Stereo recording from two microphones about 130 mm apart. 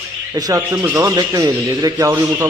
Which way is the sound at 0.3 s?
25° right (ahead or behind).